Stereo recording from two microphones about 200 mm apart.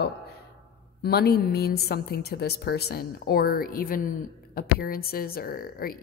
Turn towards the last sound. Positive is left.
turn(degrees=45)  # may be behind; listen again after turning